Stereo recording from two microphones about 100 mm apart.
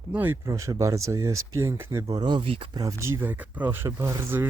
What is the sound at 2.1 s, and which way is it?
Speech, 45° right (ahead or behind).